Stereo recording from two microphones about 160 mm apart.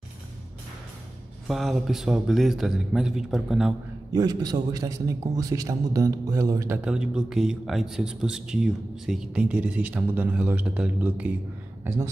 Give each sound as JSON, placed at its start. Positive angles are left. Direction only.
{"t": 1.5, "sound": "a man's voice", "side_deg": 0}
{"t": 4.1, "sound": "a man's voice", "side_deg": -25}
{"t": 6.8, "sound": "a man's voice", "side_deg": -5}